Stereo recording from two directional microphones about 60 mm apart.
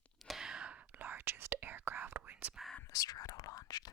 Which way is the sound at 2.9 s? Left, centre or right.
Left.